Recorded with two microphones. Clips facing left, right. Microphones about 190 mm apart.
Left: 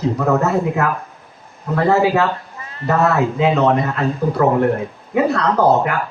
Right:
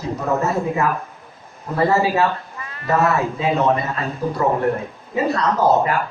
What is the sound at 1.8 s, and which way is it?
Speech, 65° left (ahead or behind).